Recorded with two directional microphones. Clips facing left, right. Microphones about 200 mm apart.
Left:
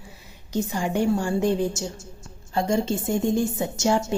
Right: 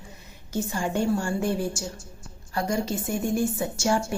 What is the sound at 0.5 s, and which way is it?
A woman's voice, 15° left (ahead or behind).